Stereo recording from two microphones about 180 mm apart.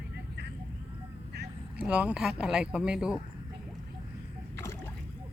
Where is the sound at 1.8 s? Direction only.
5° right (ahead or behind).